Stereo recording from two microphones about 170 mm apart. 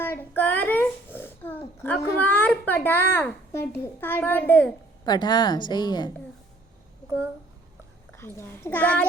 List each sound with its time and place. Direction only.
0.0 s a child's voice: 10° left (ahead or behind)
5.0 s a woman's voice: 25° left (ahead or behind)
8.1 s a child's voice: 15° left (ahead or behind)